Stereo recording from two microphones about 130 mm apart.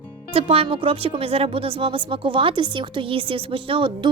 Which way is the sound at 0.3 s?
50° right (ahead or behind).